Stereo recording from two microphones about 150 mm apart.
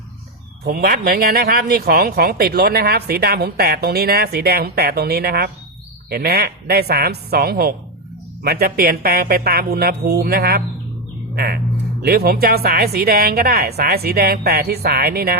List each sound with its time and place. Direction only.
0.6 s speech: 85° right